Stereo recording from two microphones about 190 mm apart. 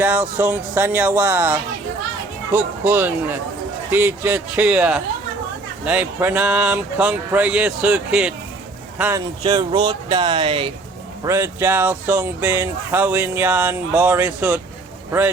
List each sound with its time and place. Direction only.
0.0 s speech: 10° right (ahead or behind)
9.4 s speech: 20° right (ahead or behind)
11.2 s speech: 15° right (ahead or behind)